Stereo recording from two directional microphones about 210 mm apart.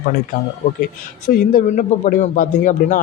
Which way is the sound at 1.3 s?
40° left (ahead or behind).